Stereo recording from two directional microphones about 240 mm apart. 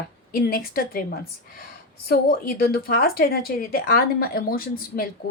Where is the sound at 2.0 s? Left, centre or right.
Left.